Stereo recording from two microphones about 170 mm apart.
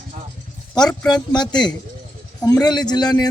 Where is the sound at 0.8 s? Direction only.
25° left (ahead or behind).